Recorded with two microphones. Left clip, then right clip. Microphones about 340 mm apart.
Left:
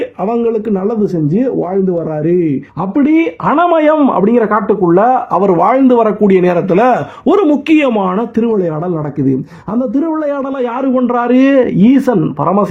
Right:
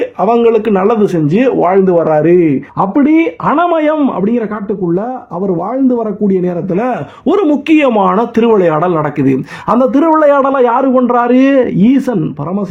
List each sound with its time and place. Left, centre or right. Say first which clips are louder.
0.3 s a man's voice: right 5 dB; centre
0.9 s speech: right 4 dB; right
3.0 s speech: left 1 dB; centre; by 5.5 s left
5.5 s speech: left 5 dB; left
5.7 s speech: left 4 dB; left; by 6.9 s centre
7.3 s a man's voice: even; centre